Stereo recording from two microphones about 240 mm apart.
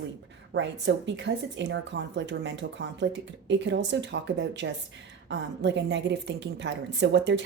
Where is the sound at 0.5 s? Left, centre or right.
Right.